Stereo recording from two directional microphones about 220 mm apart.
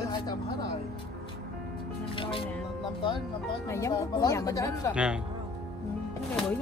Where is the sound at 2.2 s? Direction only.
25° left (ahead or behind).